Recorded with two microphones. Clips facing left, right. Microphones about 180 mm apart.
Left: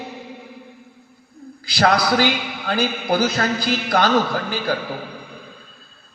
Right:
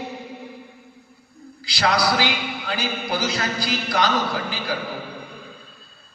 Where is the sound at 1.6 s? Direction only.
55° left (ahead or behind).